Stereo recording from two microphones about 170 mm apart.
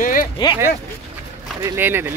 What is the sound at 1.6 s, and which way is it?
Speech, 15° right (ahead or behind).